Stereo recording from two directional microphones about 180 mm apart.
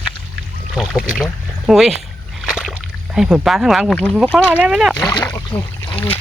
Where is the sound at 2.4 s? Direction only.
Centre (ahead or behind).